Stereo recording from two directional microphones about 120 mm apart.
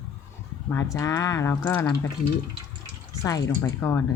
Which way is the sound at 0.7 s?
25° left (ahead or behind).